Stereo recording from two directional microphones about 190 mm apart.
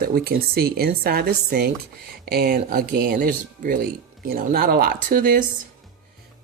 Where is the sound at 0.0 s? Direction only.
55° right (ahead or behind).